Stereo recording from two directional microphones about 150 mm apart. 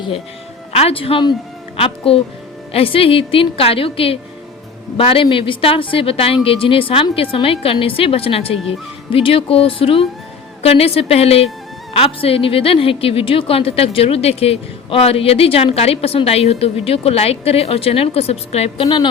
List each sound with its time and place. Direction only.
0.7 s a woman's voice: 40° left (ahead or behind)